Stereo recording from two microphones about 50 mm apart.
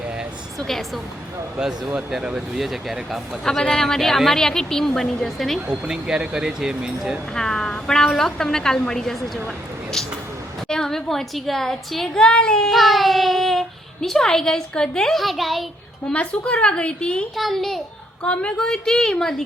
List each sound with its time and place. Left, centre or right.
2.0 s speech: centre
2.6 s speech: centre
3.6 s a woman's voice: centre
5.5 s speech: centre
7.3 s a woman's voice: centre
10.7 s a woman's voice: centre
12.7 s a child's voice: centre
15.1 s speech: centre
16.1 s a woman's voice: left
17.3 s speech: centre
18.2 s a woman's voice: centre